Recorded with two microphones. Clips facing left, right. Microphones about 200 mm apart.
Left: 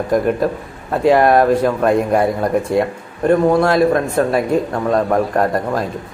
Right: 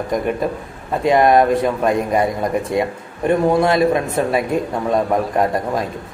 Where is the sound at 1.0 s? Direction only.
Centre (ahead or behind).